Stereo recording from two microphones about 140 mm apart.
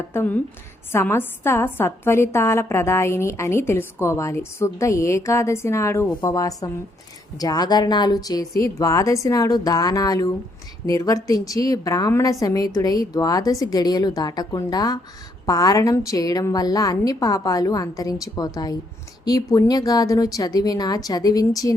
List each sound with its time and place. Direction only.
0.1 s a woman's voice: 15° left (ahead or behind)